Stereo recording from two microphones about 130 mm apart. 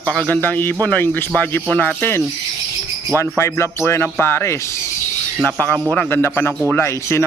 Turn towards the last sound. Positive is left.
turn(degrees=20)  # may be behind; listen again after turning